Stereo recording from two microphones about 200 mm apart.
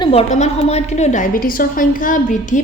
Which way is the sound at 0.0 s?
30° left (ahead or behind).